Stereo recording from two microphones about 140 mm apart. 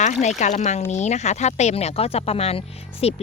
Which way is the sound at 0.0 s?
55° left (ahead or behind).